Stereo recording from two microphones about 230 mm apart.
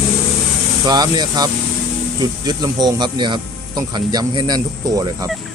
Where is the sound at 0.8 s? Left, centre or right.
Centre.